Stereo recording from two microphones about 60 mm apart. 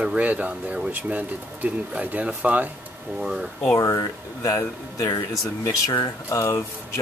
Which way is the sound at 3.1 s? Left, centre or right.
Centre.